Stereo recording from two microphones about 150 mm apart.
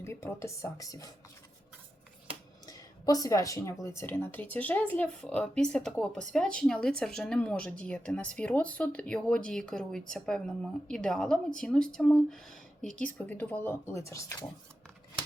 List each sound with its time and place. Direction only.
0.0 s speech: 15° left (ahead or behind)
2.6 s speech: 25° left (ahead or behind)